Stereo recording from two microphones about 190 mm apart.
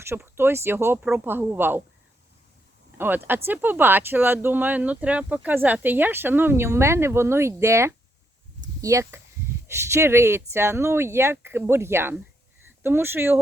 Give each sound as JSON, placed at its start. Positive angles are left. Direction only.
{"t": 0.0, "sound": "speech", "side_deg": -10}
{"t": 3.0, "sound": "speech", "side_deg": -10}